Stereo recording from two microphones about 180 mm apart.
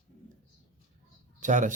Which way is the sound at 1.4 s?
45° right (ahead or behind).